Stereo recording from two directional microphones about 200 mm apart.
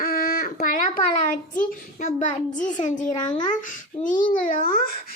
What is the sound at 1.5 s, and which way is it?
A child's voice, 35° left (ahead or behind).